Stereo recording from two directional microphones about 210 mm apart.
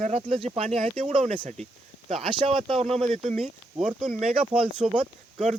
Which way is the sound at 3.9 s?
5° right (ahead or behind).